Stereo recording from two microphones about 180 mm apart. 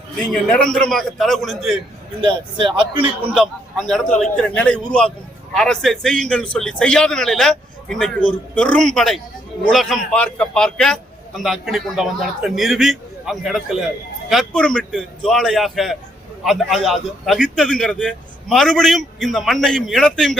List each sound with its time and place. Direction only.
0.3 s a man's voice: 5° left (ahead or behind)
2.2 s a man's voice: 25° right (ahead or behind)
3.2 s a man's voice: 5° right (ahead or behind)